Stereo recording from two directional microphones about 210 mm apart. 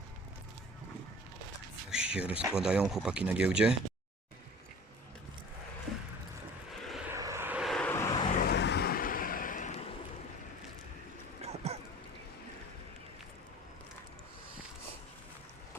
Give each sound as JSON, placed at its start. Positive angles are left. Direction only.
{"t": 1.9, "sound": "speech", "side_deg": -5}
{"t": 6.7, "sound": "vehicle", "side_deg": 0}
{"t": 7.1, "sound": "vehicle", "side_deg": -15}
{"t": 8.4, "sound": "vehicle", "side_deg": 50}
{"t": 11.4, "sound": "a sound", "side_deg": -30}